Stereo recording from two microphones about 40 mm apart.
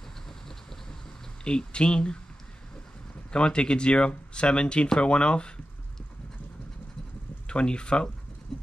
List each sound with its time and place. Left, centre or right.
0.5 s vehicle: centre
1.4 s speech: left
3.3 s speech: left
7.4 s speech: left